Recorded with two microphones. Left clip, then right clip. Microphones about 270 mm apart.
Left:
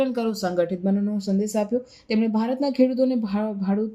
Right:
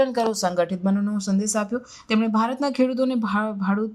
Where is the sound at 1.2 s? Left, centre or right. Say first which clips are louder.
Even; right.